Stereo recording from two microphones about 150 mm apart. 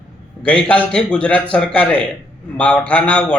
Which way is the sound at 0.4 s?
10° left (ahead or behind).